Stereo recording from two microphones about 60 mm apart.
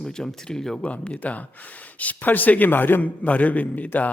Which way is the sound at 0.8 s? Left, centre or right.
Left.